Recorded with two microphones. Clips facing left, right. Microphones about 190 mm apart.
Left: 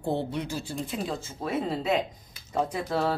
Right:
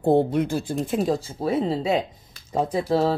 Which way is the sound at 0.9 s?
40° right (ahead or behind).